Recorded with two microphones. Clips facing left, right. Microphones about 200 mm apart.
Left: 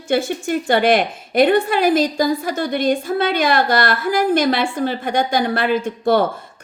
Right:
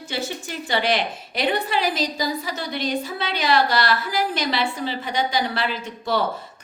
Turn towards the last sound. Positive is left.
turn(degrees=50)  # may be behind; listen again after turning